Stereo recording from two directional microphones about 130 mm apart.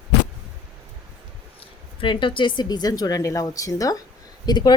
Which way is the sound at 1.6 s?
40° left (ahead or behind).